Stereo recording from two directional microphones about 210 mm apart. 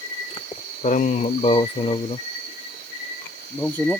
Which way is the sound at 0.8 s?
35° left (ahead or behind).